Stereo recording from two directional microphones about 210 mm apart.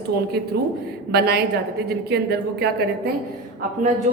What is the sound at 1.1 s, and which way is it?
A woman's voice, 50° right (ahead or behind).